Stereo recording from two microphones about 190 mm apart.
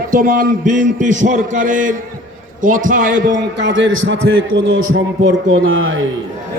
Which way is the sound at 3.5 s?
70° right (ahead or behind).